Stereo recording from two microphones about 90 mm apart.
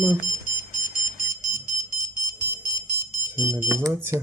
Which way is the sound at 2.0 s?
25° right (ahead or behind).